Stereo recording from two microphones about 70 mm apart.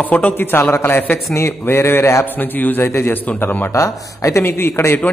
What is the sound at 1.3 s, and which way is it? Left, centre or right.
Speech, left.